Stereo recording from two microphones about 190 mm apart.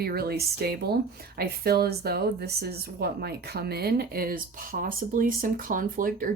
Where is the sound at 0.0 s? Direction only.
55° right (ahead or behind).